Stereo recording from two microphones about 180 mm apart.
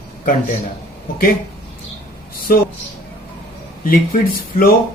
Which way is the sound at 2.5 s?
50° left (ahead or behind).